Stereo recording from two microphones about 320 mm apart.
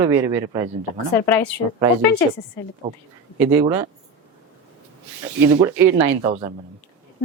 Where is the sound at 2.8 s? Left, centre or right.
Centre.